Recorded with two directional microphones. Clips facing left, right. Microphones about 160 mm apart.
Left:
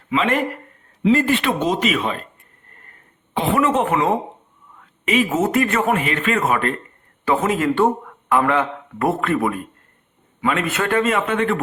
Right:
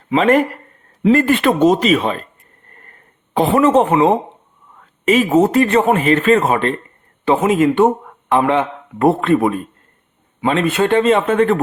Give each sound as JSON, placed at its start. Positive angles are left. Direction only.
{"t": 0.1, "sound": "speech", "side_deg": -40}
{"t": 1.0, "sound": "speech", "side_deg": -55}
{"t": 3.3, "sound": "speech", "side_deg": -40}
{"t": 3.8, "sound": "speech", "side_deg": -25}
{"t": 4.8, "sound": "speech", "side_deg": -40}